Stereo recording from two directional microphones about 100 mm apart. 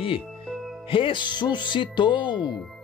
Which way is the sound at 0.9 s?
60° left (ahead or behind).